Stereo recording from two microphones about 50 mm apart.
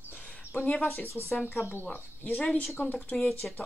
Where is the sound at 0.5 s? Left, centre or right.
Left.